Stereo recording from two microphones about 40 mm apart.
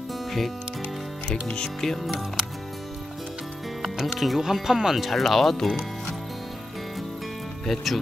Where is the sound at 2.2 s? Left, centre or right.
Centre.